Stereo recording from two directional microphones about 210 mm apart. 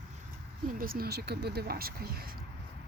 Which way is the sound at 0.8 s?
45° right (ahead or behind).